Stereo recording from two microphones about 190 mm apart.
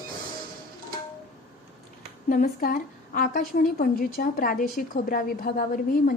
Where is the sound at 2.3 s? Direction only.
50° left (ahead or behind).